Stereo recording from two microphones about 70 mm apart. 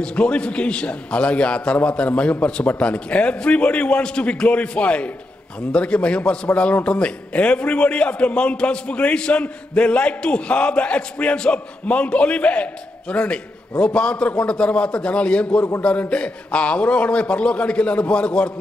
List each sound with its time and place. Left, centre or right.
0.0 s a man's voice: centre